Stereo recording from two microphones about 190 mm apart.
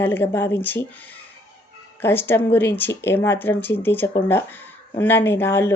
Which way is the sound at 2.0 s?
10° left (ahead or behind).